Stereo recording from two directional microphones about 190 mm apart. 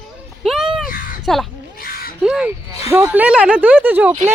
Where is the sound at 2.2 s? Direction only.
5° right (ahead or behind).